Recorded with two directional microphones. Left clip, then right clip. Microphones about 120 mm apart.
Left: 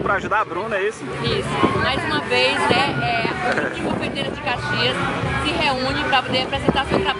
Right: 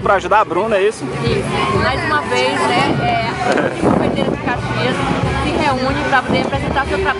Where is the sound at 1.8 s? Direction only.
5° left (ahead or behind).